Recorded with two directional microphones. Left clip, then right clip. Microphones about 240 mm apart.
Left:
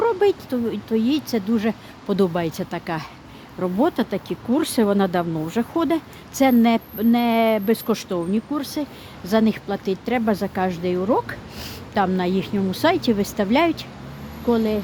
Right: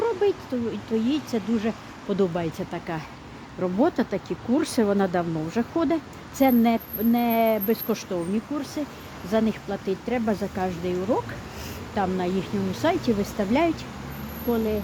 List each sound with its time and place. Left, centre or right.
0.0 s speech: left